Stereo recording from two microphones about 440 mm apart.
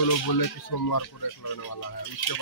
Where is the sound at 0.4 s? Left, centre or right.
Left.